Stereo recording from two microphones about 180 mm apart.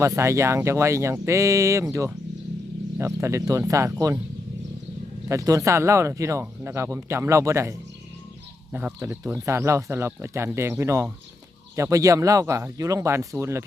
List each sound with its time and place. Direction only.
0.0 s speech: 15° right (ahead or behind)
5.3 s speech: 15° right (ahead or behind)